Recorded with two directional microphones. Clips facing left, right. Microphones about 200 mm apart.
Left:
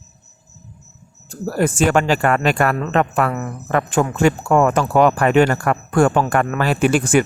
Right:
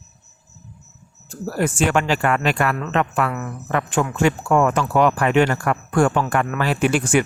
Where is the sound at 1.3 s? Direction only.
40° left (ahead or behind).